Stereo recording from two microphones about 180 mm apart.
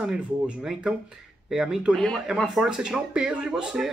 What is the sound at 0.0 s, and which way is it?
Speech, 5° right (ahead or behind).